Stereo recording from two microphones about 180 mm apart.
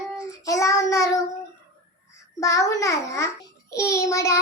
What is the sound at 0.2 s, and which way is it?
Child singing, 15° left (ahead or behind).